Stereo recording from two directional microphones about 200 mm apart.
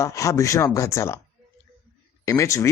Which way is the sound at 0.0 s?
15° left (ahead or behind).